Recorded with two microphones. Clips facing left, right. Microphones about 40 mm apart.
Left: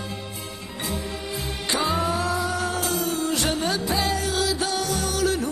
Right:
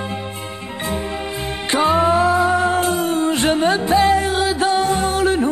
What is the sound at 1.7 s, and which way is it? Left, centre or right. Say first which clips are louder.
Music: right 9 dB; right.